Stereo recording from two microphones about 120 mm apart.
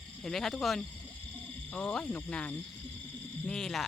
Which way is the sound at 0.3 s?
Centre (ahead or behind).